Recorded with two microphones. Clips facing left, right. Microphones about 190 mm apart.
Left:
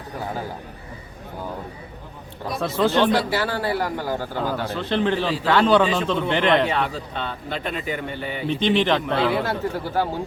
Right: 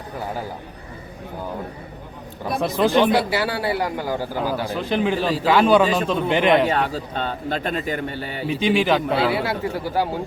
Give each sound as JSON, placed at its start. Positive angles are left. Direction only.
{"t": 2.6, "sound": "a man's voice", "side_deg": -15}
{"t": 6.7, "sound": "a man's voice", "side_deg": -40}
{"t": 8.4, "sound": "a man's voice", "side_deg": -10}